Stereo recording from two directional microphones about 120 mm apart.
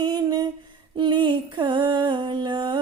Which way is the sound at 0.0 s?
35° right (ahead or behind).